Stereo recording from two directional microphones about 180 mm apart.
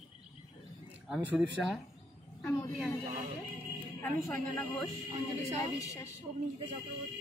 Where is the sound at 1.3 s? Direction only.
5° right (ahead or behind).